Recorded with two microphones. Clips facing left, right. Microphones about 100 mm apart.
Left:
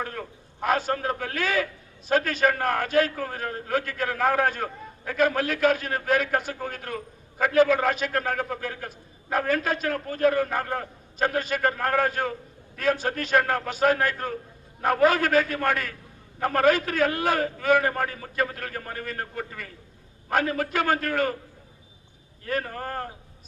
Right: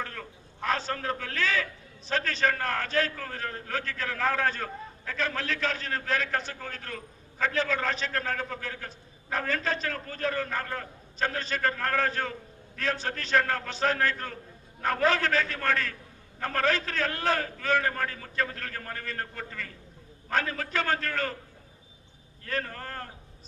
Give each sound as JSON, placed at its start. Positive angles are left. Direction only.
{"t": 0.0, "sound": "a man's voice", "side_deg": 15}
{"t": 9.3, "sound": "a man's voice", "side_deg": 15}
{"t": 22.4, "sound": "speech", "side_deg": 20}